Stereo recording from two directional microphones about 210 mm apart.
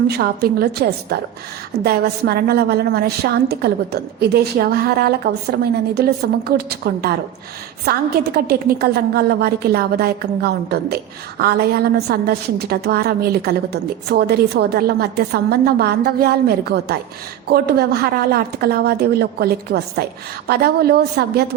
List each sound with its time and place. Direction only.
0.1 s a woman's voice: 50° right (ahead or behind)